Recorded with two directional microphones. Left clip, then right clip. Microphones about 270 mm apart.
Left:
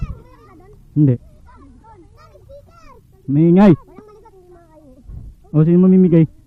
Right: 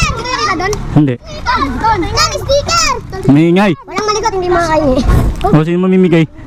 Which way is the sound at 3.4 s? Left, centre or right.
Centre.